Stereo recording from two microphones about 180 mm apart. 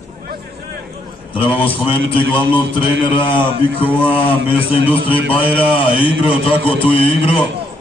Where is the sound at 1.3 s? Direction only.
30° left (ahead or behind).